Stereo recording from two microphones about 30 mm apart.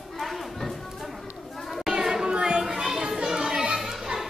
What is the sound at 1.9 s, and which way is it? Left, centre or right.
Children playing, centre.